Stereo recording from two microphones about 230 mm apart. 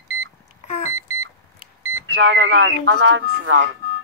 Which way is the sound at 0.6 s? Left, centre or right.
Left.